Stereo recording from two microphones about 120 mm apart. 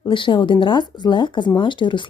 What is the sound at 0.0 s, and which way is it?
Speech, 40° left (ahead or behind).